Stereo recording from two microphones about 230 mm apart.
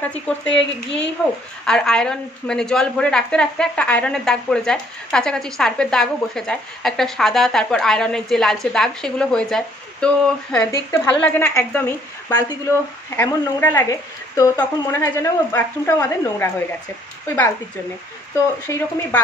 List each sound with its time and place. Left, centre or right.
0.0 s a woman's voice: centre
0.6 s speech: left
1.7 s a woman's voice: centre
18.7 s speech: centre